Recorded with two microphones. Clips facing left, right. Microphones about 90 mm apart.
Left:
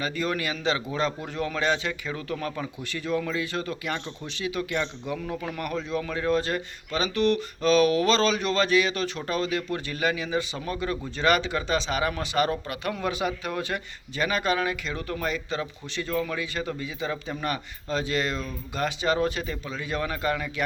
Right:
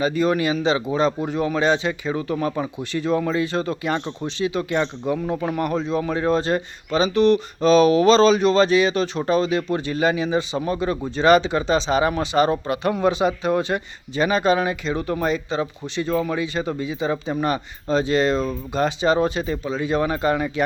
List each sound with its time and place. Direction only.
0.0 s a man's voice: 20° right (ahead or behind)